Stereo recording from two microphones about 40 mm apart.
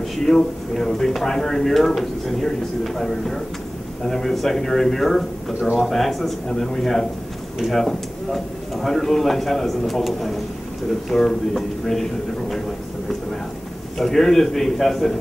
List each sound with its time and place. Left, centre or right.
0.2 s a man's voice: centre
5.5 s speech: centre
5.8 s a man's voice: centre
13.9 s a man's voice: centre